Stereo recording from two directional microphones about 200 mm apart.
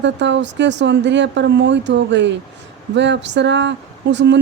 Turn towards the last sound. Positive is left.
turn(degrees=-60)  # may be behind; listen again after turning